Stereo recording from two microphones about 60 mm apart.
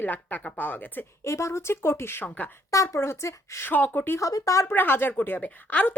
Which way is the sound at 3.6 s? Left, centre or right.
Left.